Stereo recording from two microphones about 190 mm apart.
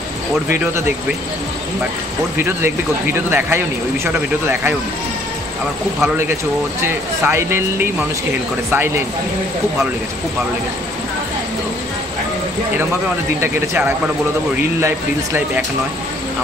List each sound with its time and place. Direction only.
0.5 s speech: 15° right (ahead or behind)
2.3 s speech: 10° right (ahead or behind)
5.9 s speech: 10° right (ahead or behind)
13.4 s speech: 10° right (ahead or behind)